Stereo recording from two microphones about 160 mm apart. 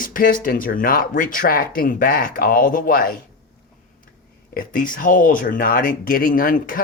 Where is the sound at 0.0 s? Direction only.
60° left (ahead or behind).